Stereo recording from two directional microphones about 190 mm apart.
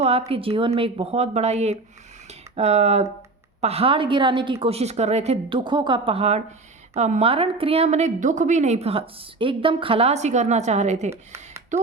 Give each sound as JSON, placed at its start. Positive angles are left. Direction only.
{"t": 0.0, "sound": "a woman's voice", "side_deg": -30}